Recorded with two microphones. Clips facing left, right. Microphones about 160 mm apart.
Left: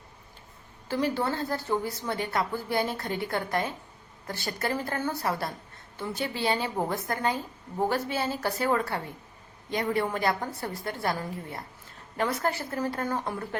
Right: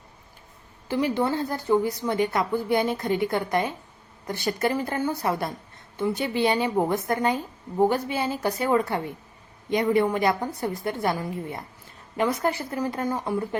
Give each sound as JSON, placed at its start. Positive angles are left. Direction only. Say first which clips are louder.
{"t": 0.9, "sound": "a woman's voice", "louder": "right 4 dB", "side_deg": -15}